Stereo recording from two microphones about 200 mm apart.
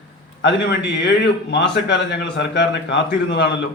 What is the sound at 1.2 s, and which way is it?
Speech, 60° left (ahead or behind).